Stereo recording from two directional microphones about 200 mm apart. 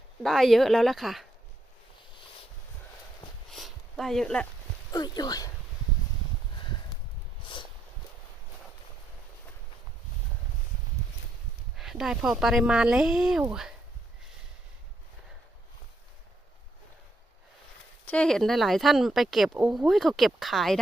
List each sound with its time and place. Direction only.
0.2 s speech: centre (ahead or behind)
3.5 s a sound: centre (ahead or behind)
4.9 s speech: 20° left (ahead or behind)
7.4 s a sound: 25° left (ahead or behind)
11.8 s speech: centre (ahead or behind)
18.0 s speech: 5° left (ahead or behind)